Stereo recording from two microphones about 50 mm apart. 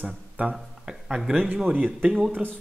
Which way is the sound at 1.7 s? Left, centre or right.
Right.